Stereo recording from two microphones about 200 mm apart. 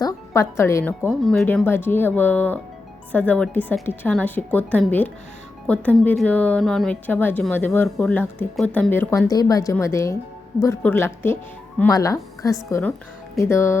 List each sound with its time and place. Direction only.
0.0 s a woman's voice: 15° left (ahead or behind)